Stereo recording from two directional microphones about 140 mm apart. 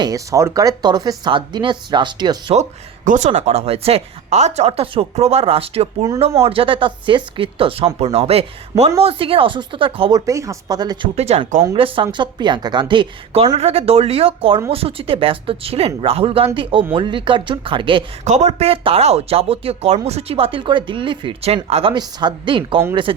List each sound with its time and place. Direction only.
0.0 s speech: 25° right (ahead or behind)
2.6 s speech: 60° right (ahead or behind); by 10.2 s 40° right (ahead or behind)
10.2 s speech: 25° right (ahead or behind)
11.1 s speech: 50° right (ahead or behind)
18.3 s speech: 50° right (ahead or behind)
21.9 s speech: 35° right (ahead or behind)